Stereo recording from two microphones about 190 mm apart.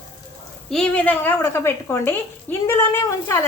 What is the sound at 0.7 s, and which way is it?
A woman's voice, 5° left (ahead or behind).